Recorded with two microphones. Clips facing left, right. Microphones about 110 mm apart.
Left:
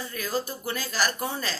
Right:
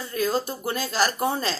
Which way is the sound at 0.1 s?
25° right (ahead or behind).